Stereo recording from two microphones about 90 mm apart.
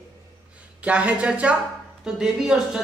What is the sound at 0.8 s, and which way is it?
A man's voice, 15° right (ahead or behind).